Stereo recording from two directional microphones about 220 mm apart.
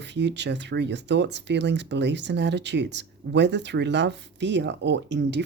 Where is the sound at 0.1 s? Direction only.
50° right (ahead or behind).